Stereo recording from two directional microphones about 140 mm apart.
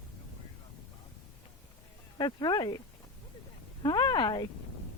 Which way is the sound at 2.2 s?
30° left (ahead or behind).